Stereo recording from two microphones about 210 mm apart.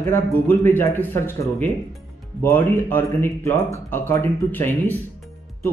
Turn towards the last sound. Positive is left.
turn(degrees=10)  # may be behind; listen again after turning